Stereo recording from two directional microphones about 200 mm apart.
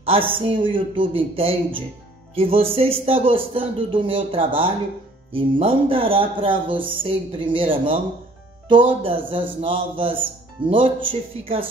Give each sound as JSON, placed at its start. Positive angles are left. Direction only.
{"t": 0.0, "sound": "speech", "side_deg": -25}